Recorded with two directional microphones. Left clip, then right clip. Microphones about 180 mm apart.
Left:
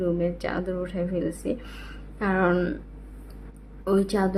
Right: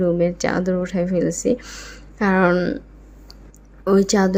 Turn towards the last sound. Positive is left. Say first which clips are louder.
# right 7 dB
turn(degrees=-40)  # may be behind; listen again after turning